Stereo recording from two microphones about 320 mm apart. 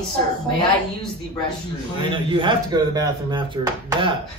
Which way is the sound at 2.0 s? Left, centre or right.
Centre.